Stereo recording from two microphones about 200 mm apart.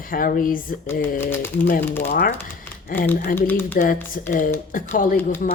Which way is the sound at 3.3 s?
10° left (ahead or behind).